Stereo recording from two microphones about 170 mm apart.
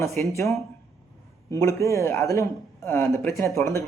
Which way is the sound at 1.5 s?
20° left (ahead or behind).